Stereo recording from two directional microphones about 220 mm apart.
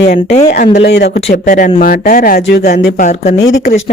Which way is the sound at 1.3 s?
35° left (ahead or behind).